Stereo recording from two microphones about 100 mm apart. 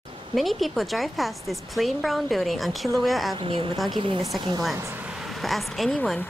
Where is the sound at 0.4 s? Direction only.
Centre (ahead or behind).